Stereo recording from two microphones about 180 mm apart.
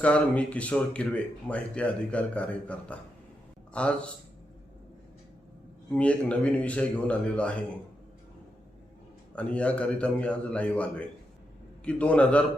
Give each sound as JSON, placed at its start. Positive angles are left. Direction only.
{"t": 0.0, "sound": "a man's voice", "side_deg": 5}
{"t": 5.9, "sound": "speech", "side_deg": 5}
{"t": 9.3, "sound": "speech", "side_deg": 5}